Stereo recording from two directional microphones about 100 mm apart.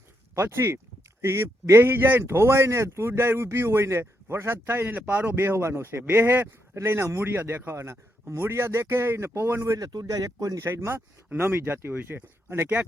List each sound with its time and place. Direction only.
0.3 s speech: 25° right (ahead or behind)